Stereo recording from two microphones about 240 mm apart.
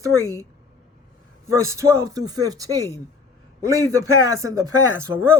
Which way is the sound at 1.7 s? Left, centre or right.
Centre.